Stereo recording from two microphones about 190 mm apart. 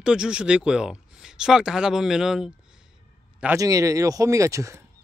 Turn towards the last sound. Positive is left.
turn(degrees=-15)  # may be behind; listen again after turning